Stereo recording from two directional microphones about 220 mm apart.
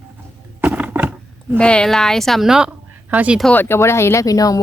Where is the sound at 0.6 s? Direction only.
5° right (ahead or behind).